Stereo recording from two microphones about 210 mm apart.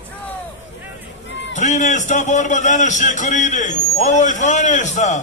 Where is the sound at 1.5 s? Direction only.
35° left (ahead or behind).